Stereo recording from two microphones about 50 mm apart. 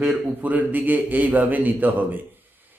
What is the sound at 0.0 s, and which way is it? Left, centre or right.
Speech, right.